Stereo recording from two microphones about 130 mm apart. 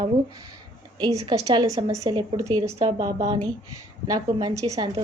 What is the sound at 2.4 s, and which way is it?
A woman's voice, 25° right (ahead or behind).